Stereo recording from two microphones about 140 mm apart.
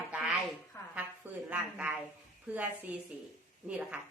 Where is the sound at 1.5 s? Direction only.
10° right (ahead or behind).